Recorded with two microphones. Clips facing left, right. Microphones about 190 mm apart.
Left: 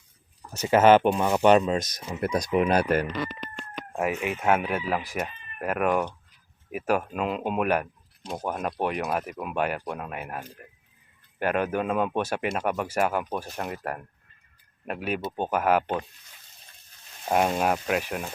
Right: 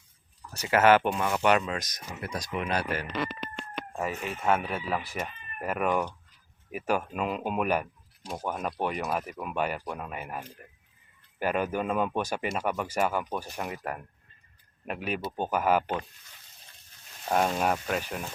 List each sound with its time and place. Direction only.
0.5 s speech: 20° left (ahead or behind)
2.0 s speech: 45° left (ahead or behind)
3.9 s speech: 10° left (ahead or behind)
13.4 s speech: 10° right (ahead or behind)
14.8 s speech: centre (ahead or behind)
17.2 s speech: 10° left (ahead or behind)